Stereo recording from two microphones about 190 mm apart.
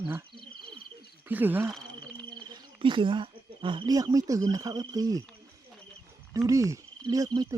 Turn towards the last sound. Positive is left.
turn(degrees=-20)  # may be behind; listen again after turning